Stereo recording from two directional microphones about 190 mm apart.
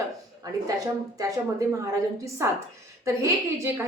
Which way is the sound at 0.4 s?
20° right (ahead or behind).